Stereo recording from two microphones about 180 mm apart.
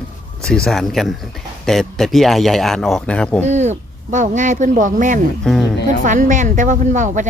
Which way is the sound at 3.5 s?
40° right (ahead or behind).